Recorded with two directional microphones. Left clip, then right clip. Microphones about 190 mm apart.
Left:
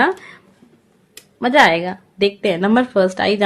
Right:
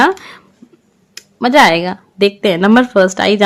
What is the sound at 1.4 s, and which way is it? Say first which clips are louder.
Speech: right 4 dB; 30° right (ahead or behind).